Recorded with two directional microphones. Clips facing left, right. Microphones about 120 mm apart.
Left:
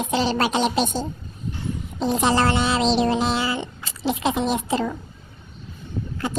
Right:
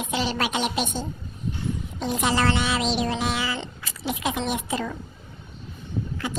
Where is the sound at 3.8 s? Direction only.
30° left (ahead or behind).